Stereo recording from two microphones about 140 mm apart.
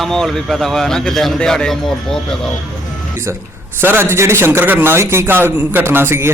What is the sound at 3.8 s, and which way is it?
A man's voice, 15° right (ahead or behind).